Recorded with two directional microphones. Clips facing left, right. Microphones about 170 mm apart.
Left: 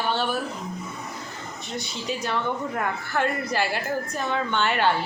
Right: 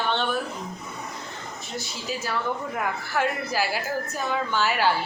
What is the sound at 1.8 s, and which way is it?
A woman's voice, 5° right (ahead or behind).